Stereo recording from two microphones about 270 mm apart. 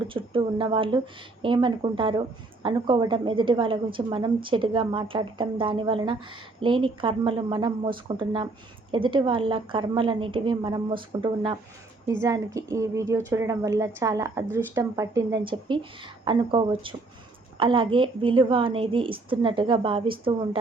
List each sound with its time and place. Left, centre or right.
0.0 s a woman's voice: centre